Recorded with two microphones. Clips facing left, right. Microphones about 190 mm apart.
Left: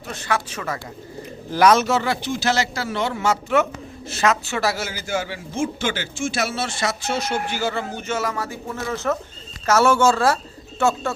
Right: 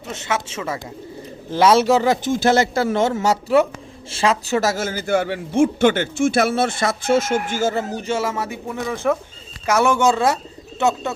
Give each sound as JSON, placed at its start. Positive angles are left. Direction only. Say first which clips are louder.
{"t": 0.1, "sound": "a woman's voice", "louder": "right 1 dB", "side_deg": -20}